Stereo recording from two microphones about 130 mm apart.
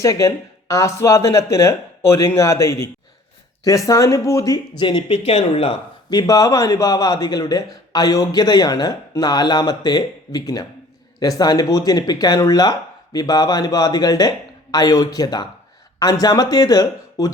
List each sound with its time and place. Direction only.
0.0 s a man's voice: 25° left (ahead or behind)
4.8 s speech: 40° left (ahead or behind)
6.1 s a man's voice: 30° left (ahead or behind)